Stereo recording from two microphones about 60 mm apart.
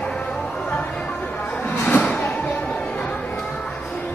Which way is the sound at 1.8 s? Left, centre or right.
Left.